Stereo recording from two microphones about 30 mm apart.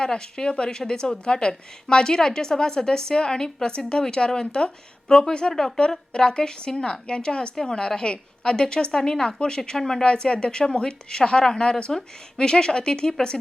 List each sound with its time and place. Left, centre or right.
0.0 s a woman's voice: left
5.5 s a woman's voice: centre
5.9 s a woman's voice: left
10.0 s a woman's voice: left